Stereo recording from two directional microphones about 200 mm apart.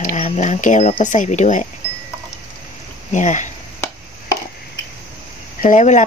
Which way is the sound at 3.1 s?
40° left (ahead or behind).